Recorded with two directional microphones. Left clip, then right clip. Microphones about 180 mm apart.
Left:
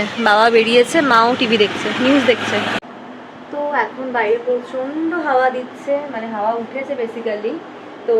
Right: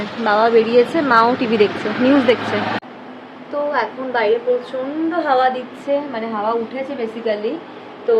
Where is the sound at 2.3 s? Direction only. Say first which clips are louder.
Even; 25° right (ahead or behind).